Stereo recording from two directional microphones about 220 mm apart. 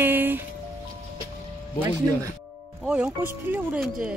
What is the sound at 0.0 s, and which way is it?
Music, 10° right (ahead or behind).